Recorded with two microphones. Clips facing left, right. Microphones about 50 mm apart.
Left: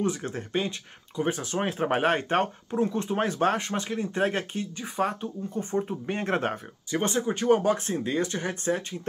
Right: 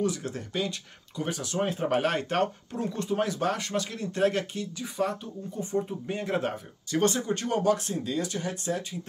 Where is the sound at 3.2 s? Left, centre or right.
Left.